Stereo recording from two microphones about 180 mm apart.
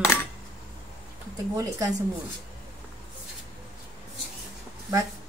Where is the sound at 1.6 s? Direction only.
20° right (ahead or behind).